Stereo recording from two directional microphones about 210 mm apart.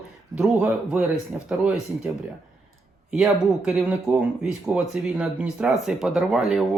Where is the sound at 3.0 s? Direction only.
Centre (ahead or behind).